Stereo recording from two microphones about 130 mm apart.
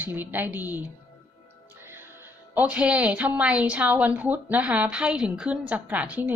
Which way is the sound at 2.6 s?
10° right (ahead or behind).